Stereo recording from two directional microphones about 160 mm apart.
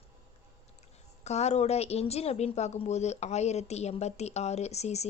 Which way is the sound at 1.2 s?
45° left (ahead or behind).